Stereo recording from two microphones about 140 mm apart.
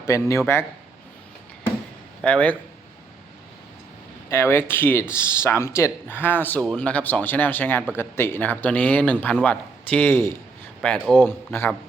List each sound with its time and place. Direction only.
0.0 s speech: 20° left (ahead or behind)
2.2 s speech: 10° left (ahead or behind)
4.3 s speech: 20° left (ahead or behind)